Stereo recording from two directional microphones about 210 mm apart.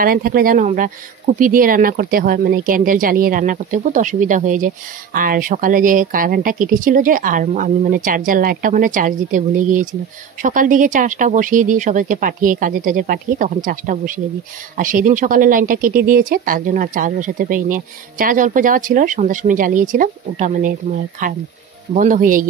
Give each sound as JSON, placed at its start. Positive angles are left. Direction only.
{"t": 0.0, "sound": "speech", "side_deg": -45}